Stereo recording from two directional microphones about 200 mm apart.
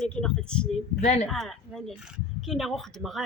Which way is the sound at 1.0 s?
35° left (ahead or behind).